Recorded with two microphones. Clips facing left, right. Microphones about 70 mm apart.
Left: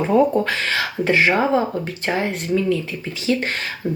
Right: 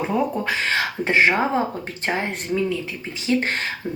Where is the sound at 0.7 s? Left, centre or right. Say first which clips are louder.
Left 1 dB; right.